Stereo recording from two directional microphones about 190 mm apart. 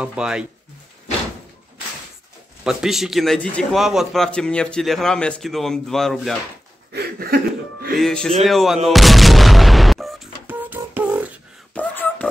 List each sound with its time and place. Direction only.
0.0 s a man's voice: 5° right (ahead or behind)
2.6 s a man's voice: 5° right (ahead or behind)
6.9 s music: 55° right (ahead or behind)
8.0 s a man's voice: 5° left (ahead or behind)
8.8 s artillery fire: centre (ahead or behind)
11.7 s whispering: 10° left (ahead or behind)